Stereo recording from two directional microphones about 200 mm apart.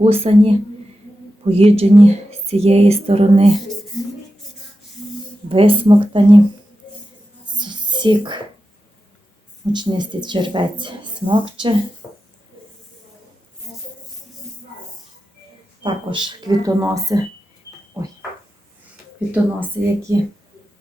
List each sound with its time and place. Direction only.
0.0 s a woman's voice: 30° right (ahead or behind)
2.0 s whispering: 30° right (ahead or behind)
5.5 s a woman's voice: 30° right (ahead or behind)
7.6 s whispering: 20° right (ahead or behind)
9.7 s a woman's voice: 20° right (ahead or behind)
15.8 s a woman's voice: 25° right (ahead or behind)
19.3 s speech: 10° right (ahead or behind)